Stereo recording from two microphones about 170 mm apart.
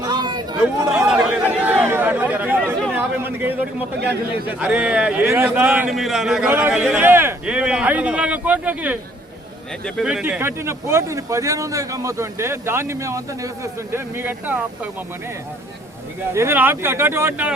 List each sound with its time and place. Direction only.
0.0 s chatter: 25° right (ahead or behind)
0.9 s chatter: 5° right (ahead or behind)
4.4 s speech: 10° right (ahead or behind)
5.9 s speech: centre (ahead or behind)
16.3 s speech: 15° right (ahead or behind)